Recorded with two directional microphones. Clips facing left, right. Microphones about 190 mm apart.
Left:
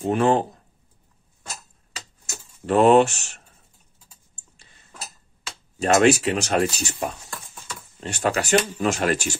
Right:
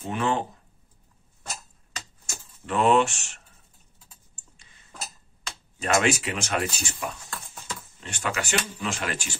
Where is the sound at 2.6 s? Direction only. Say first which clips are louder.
Left 6 dB; 40° left (ahead or behind).